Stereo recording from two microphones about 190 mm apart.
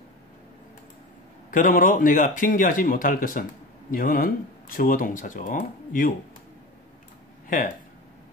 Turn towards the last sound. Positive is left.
turn(degrees=45)  # may be behind; listen again after turning